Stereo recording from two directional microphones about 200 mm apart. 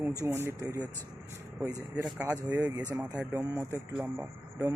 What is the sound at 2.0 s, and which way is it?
Speech, 5° right (ahead or behind).